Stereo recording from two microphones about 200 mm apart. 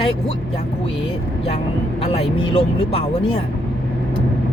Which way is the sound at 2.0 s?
30° left (ahead or behind).